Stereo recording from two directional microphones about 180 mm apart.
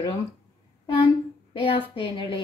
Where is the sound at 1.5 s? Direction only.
30° left (ahead or behind).